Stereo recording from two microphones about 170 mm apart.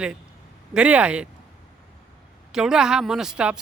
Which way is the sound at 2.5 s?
5° right (ahead or behind).